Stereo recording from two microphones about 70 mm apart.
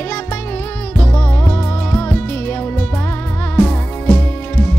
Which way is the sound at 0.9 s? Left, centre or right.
Left.